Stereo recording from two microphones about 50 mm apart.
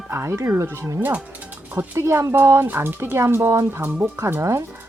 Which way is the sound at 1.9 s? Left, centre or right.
Right.